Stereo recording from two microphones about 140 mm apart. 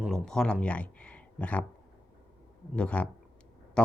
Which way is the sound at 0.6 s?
10° left (ahead or behind).